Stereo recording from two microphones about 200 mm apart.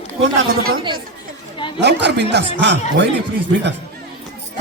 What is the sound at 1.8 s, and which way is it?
Speech, 60° right (ahead or behind).